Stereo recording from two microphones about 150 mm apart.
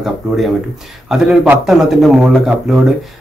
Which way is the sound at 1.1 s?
Centre (ahead or behind).